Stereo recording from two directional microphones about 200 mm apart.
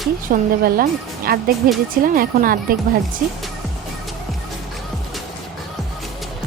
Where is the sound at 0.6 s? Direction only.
50° right (ahead or behind).